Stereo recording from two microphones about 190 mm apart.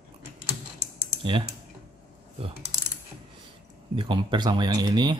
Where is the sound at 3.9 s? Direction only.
25° right (ahead or behind).